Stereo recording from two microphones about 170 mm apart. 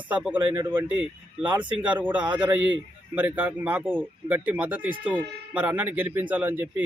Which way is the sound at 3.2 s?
10° right (ahead or behind).